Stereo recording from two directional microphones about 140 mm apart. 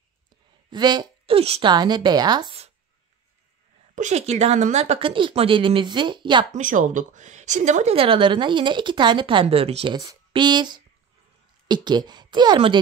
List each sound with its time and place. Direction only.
0.7 s a woman's voice: 30° right (ahead or behind)
1.7 s speech: 30° right (ahead or behind)
3.9 s a woman's voice: 55° right (ahead or behind); by 6.4 s 35° right (ahead or behind)
6.5 s a woman's voice: 65° right (ahead or behind); by 9.9 s 45° right (ahead or behind)
9.9 s speech: 30° right (ahead or behind)